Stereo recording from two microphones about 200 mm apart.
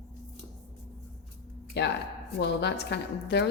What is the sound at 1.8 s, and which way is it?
A woman's voice, 60° left (ahead or behind).